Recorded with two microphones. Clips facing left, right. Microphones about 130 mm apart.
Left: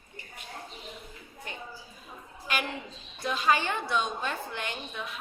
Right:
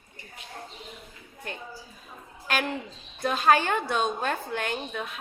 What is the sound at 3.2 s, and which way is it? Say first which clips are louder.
A woman's voice: right 5 dB; 50° right (ahead or behind).